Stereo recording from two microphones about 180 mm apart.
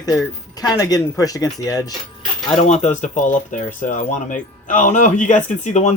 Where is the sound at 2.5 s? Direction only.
35° left (ahead or behind).